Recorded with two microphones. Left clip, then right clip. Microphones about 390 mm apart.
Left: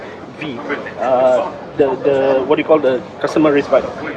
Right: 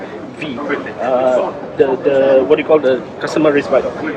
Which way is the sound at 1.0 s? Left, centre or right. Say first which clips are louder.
Left 1 dB; left.